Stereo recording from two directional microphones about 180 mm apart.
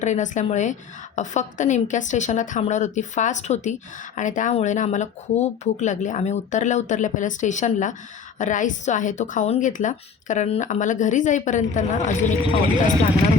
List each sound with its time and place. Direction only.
0.0 s a woman's voice: 40° left (ahead or behind)